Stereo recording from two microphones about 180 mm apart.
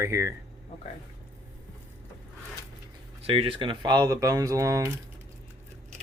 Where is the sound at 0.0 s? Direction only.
15° right (ahead or behind).